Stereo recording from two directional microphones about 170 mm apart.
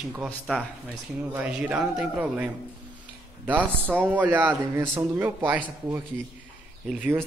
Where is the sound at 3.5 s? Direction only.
10° right (ahead or behind).